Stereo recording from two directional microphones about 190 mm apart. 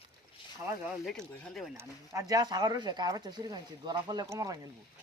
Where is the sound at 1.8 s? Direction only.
15° right (ahead or behind).